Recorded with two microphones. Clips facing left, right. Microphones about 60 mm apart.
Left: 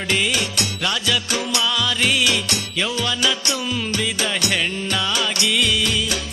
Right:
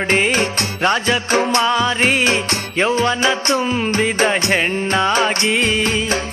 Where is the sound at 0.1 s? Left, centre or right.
Right.